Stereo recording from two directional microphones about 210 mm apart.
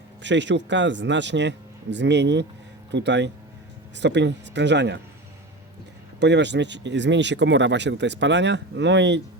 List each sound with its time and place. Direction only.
0.2 s speech: 60° right (ahead or behind)
6.1 s speech: 55° right (ahead or behind)